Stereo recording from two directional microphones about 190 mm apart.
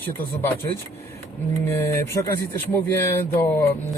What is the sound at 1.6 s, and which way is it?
Speech, 15° left (ahead or behind).